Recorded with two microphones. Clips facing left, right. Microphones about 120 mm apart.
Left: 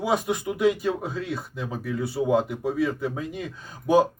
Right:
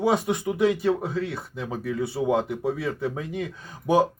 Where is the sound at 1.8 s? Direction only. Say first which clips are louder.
Even; 25° right (ahead or behind).